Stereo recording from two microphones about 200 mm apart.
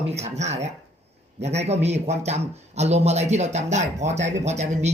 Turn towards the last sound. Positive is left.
turn(degrees=-35)  # may be behind; listen again after turning